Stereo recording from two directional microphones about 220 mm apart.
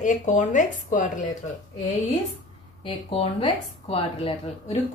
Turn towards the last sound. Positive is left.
turn(degrees=25)  # may be behind; listen again after turning